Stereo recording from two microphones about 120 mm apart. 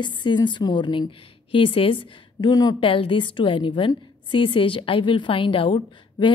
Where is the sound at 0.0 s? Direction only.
40° left (ahead or behind).